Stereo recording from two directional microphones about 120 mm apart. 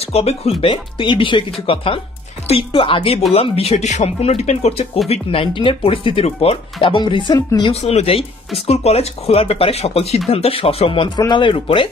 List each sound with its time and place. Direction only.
0.0 s speech: 60° left (ahead or behind)
5.1 s speech: 50° left (ahead or behind)
6.8 s speech: 40° left (ahead or behind)
7.7 s speech: 60° left (ahead or behind); by 11.9 s 45° left (ahead or behind)